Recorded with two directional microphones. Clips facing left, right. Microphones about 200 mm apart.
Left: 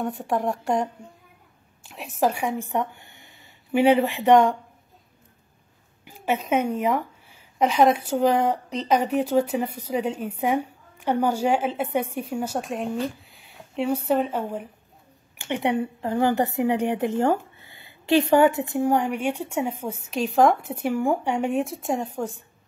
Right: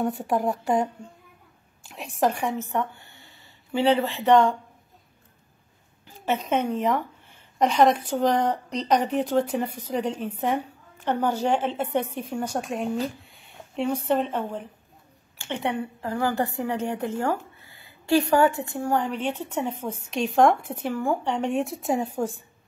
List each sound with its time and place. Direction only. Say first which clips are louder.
0.0 s a woman's voice: right 1 dB; centre (ahead or behind); by 4.6 s 15° left (ahead or behind)
6.0 s speech: left 1 dB; 10° left (ahead or behind); by 22.3 s 5° right (ahead or behind)